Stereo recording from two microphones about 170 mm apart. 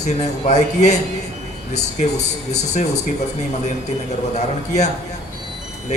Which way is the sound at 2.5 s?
40° left (ahead or behind).